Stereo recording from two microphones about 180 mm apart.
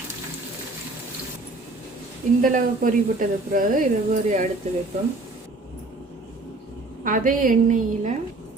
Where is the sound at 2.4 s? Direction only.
50° right (ahead or behind).